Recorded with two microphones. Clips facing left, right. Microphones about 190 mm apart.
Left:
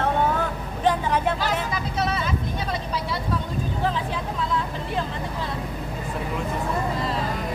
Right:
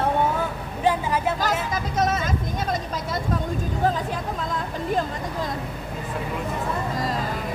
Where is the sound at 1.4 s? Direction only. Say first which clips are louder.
Right 1 dB; 45° right (ahead or behind).